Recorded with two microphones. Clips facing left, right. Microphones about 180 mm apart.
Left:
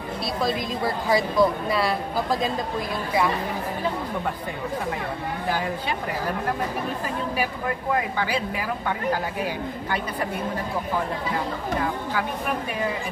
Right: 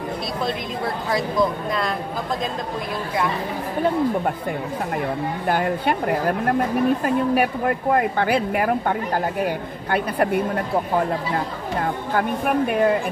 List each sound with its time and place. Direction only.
0.5 s speech: centre (ahead or behind)
5.5 s speech: 60° right (ahead or behind)